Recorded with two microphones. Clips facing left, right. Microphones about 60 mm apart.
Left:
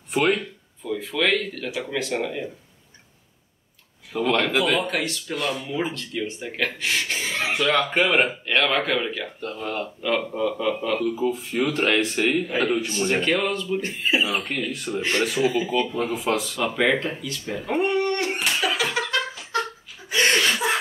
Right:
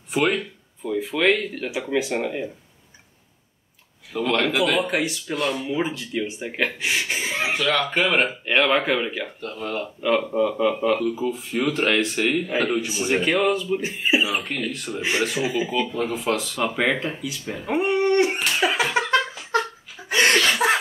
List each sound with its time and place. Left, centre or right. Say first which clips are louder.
0.1 s speech: even; centre
0.8 s speech: right 3 dB; centre
4.1 s speech: even; centre
7.5 s speech: left 2 dB; centre
8.5 s speech: right 2 dB; centre
9.4 s speech: left 1 dB; centre
10.0 s speech: right 4 dB; centre
15.0 s speech: left 1 dB; centre
16.6 s speech: left 1 dB; centre
18.6 s a sound: right 3 dB; right
20.3 s chuckle: right 3 dB; right